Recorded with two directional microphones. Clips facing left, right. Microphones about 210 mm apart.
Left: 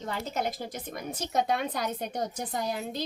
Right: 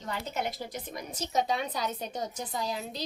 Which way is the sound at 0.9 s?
55° left (ahead or behind).